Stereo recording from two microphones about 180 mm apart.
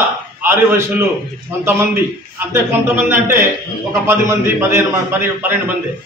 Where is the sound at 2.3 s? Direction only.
10° right (ahead or behind).